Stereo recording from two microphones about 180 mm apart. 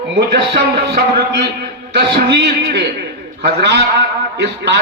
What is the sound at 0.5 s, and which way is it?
Music, 55° right (ahead or behind).